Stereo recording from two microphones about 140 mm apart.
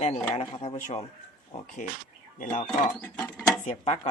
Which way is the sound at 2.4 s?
65° left (ahead or behind).